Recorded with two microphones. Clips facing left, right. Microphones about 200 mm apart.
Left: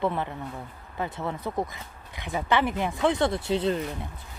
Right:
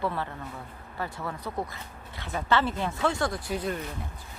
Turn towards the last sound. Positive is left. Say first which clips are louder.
# left 6 dB
turn(degrees=25)  # may be behind; listen again after turning